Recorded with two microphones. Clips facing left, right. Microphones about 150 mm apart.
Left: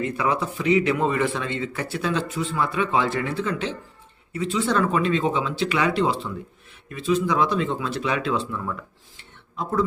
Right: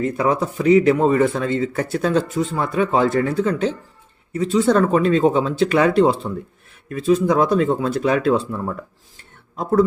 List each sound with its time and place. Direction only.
0.0 s speech: 40° right (ahead or behind)